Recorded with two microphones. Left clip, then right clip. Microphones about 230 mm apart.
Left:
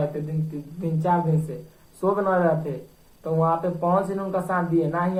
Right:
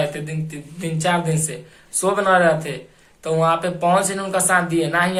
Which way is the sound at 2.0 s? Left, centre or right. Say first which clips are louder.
Right 6 dB; right.